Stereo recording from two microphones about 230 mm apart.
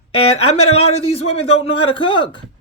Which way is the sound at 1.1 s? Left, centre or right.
Left.